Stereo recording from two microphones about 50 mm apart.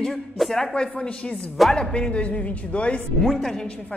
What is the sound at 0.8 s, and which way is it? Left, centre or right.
Speech, centre.